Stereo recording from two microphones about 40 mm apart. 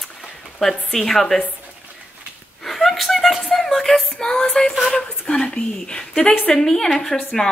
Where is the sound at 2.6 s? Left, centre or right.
Centre; by 4.8 s left.